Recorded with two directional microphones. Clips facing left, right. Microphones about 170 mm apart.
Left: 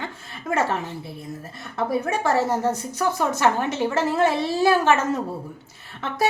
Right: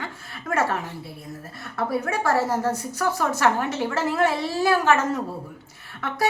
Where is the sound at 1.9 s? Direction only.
20° left (ahead or behind).